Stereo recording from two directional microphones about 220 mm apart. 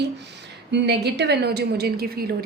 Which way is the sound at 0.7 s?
50° right (ahead or behind).